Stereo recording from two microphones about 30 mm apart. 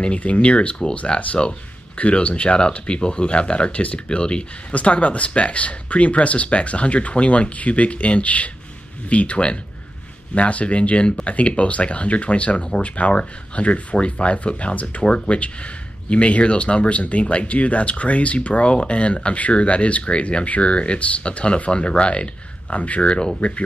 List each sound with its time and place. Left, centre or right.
0.2 s speech: left
2.0 s speech: left
2.9 s speech: left
4.7 s speech: left
11.2 s speech: left
13.2 s speech: left
22.8 s speech: left
23.4 s speech: left